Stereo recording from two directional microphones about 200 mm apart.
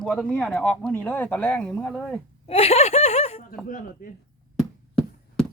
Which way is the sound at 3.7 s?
40° left (ahead or behind).